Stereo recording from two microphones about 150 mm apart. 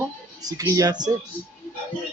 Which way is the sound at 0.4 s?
25° right (ahead or behind).